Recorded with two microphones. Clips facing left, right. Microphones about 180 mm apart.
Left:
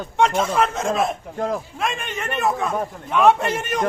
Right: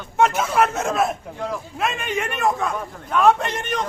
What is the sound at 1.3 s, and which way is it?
Speech, 45° left (ahead or behind).